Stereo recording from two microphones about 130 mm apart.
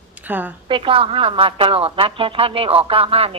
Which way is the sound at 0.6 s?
40° right (ahead or behind).